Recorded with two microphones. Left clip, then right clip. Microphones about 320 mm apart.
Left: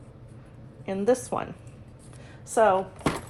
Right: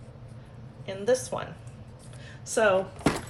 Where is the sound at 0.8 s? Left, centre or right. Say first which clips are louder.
Left 2 dB; centre.